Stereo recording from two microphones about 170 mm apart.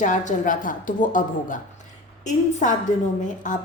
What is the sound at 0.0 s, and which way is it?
A woman's voice, 50° left (ahead or behind).